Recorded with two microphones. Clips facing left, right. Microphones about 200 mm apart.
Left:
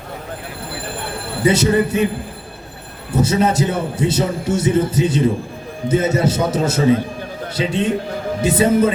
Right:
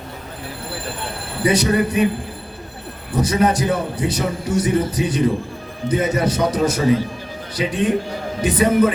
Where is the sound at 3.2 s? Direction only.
25° left (ahead or behind).